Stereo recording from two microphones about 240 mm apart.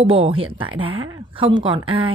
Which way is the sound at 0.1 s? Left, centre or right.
Right.